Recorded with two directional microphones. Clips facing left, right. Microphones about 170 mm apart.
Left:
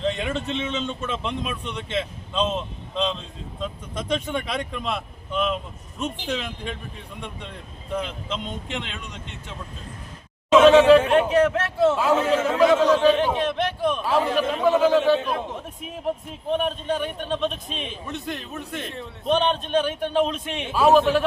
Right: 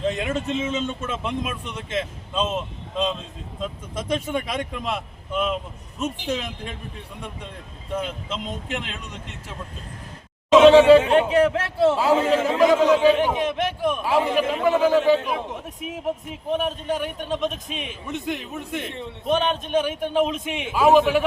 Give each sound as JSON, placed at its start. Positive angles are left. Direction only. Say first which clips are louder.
{"t": 0.0, "sound": "a man's voice", "louder": "right 1 dB", "side_deg": -5}
{"t": 8.6, "sound": "speech", "louder": "right 1 dB", "side_deg": -5}
{"t": 10.7, "sound": "a man's voice", "louder": "right 2 dB", "side_deg": -25}
{"t": 12.0, "sound": "a man's voice", "louder": "right 1 dB", "side_deg": -15}
{"t": 19.2, "sound": "a man's voice", "louder": "left 1 dB", "side_deg": -10}